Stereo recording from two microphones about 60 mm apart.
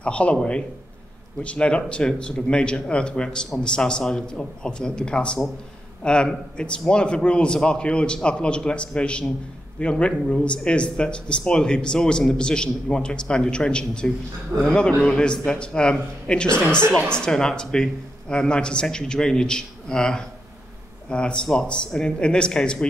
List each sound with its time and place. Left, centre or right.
0.0 s a man's voice: centre